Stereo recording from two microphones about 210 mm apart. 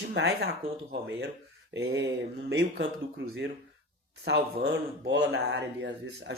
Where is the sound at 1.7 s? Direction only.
55° right (ahead or behind).